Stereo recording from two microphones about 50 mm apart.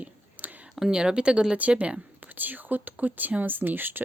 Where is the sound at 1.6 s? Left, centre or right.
Right.